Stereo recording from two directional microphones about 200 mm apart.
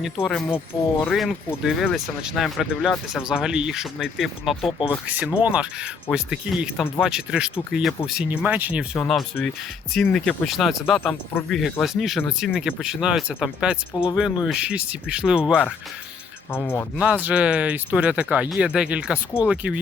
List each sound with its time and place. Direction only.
0.2 s speech: 5° left (ahead or behind)
13.9 s speech: 20° left (ahead or behind)
14.4 s speech: 5° right (ahead or behind)
16.5 s speech: 10° left (ahead or behind)
17.2 s speech: 5° right (ahead or behind)